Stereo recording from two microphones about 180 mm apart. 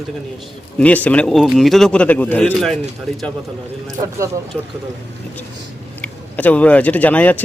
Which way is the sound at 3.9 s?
20° right (ahead or behind).